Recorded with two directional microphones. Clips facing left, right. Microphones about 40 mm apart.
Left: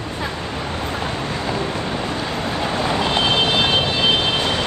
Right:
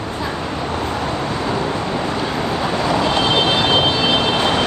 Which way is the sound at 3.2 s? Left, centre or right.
Right.